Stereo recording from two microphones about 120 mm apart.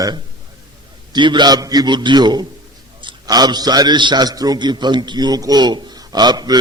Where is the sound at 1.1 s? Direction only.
40° right (ahead or behind).